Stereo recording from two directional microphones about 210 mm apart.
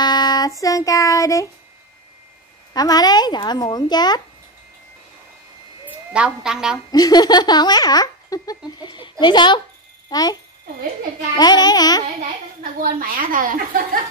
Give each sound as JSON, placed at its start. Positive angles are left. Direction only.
{"t": 0.0, "sound": "child singing", "side_deg": 20}
{"t": 2.7, "sound": "speech", "side_deg": 20}
{"t": 5.9, "sound": "a woman's voice", "side_deg": -5}
{"t": 6.9, "sound": "a child's voice", "side_deg": 20}
{"t": 11.3, "sound": "speech", "side_deg": 20}
{"t": 13.0, "sound": "a woman's voice", "side_deg": -40}